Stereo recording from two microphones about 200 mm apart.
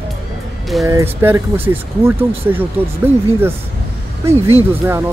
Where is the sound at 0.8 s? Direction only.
10° right (ahead or behind).